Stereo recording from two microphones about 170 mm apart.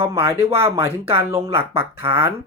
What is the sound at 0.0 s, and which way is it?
Speech, 20° right (ahead or behind).